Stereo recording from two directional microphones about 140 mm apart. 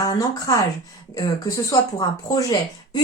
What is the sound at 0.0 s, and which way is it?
Speech, 25° left (ahead or behind).